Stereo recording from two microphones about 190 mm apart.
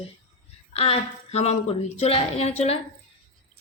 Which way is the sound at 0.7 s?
30° left (ahead or behind).